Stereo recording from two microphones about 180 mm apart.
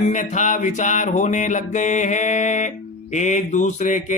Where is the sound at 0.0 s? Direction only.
45° left (ahead or behind).